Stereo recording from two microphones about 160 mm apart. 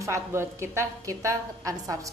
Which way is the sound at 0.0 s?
20° right (ahead or behind).